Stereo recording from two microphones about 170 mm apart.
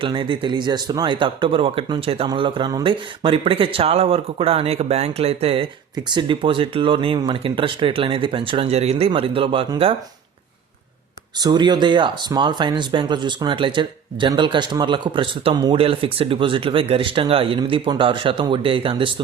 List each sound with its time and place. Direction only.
0.0 s speech: 30° right (ahead or behind)
11.3 s speech: 25° right (ahead or behind)